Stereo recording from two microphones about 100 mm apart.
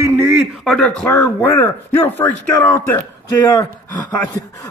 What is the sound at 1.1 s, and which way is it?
A man's voice, 20° left (ahead or behind).